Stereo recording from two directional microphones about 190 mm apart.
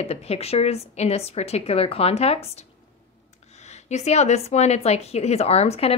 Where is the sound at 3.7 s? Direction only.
35° left (ahead or behind).